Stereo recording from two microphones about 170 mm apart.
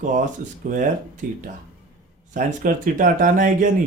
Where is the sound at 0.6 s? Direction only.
50° right (ahead or behind).